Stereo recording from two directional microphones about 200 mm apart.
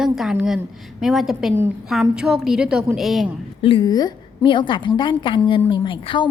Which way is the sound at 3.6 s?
25° left (ahead or behind).